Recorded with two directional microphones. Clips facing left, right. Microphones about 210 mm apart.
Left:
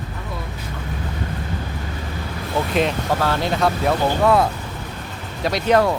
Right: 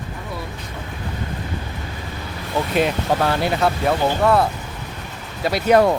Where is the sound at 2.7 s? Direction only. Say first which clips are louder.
Right 2 dB; centre (ahead or behind).